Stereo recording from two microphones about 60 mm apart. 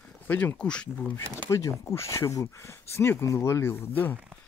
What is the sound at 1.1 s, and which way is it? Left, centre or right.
Speech, left.